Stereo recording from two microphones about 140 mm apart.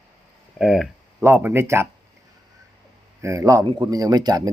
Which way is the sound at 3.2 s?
20° right (ahead or behind).